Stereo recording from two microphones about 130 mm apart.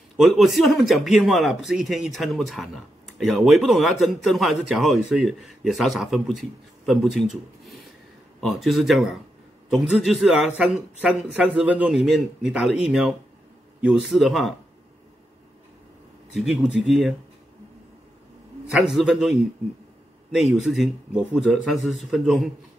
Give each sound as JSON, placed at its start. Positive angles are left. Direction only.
{"t": 0.2, "sound": "a man's voice", "side_deg": 0}
{"t": 16.3, "sound": "a man's voice", "side_deg": -10}
{"t": 18.7, "sound": "a man's voice", "side_deg": 0}
{"t": 20.5, "sound": "a man's voice", "side_deg": 0}